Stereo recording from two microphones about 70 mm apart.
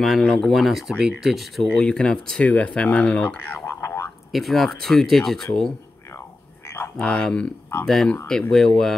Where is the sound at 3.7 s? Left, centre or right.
Left.